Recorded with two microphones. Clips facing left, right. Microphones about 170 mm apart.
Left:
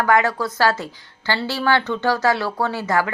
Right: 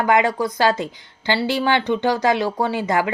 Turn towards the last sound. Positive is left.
turn(degrees=-20)  # may be behind; listen again after turning